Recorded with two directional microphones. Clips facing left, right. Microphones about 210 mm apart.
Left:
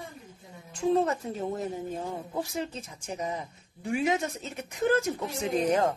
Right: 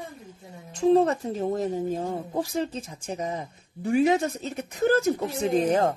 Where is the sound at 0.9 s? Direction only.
40° right (ahead or behind).